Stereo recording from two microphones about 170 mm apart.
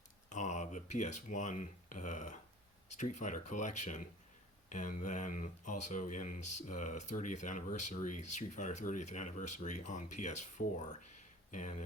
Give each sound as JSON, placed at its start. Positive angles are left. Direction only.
{"t": 0.3, "sound": "speech", "side_deg": 45}
{"t": 11.5, "sound": "speech", "side_deg": 45}